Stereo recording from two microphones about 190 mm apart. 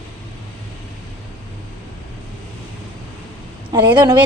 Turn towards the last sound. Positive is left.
turn(degrees=-25)  # may be behind; listen again after turning